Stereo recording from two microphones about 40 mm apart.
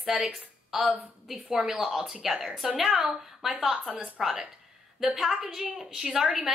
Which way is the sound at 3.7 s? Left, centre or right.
Right.